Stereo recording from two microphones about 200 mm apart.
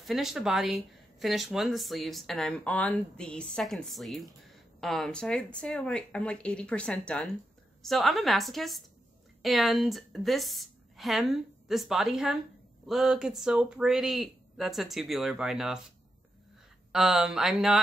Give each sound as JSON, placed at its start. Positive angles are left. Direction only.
{"t": 0.0, "sound": "a woman's voice", "side_deg": 0}
{"t": 16.9, "sound": "speech", "side_deg": 0}